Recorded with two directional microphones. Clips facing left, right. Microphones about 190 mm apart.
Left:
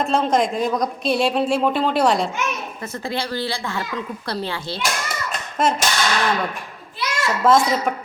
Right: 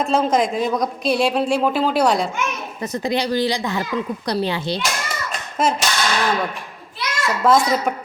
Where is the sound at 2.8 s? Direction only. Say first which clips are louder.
Right 6 dB; 15° right (ahead or behind).